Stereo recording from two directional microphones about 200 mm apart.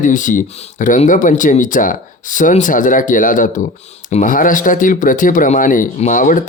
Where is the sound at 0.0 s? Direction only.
40° left (ahead or behind).